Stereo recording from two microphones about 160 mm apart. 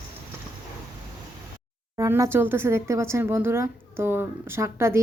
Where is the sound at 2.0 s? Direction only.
15° right (ahead or behind).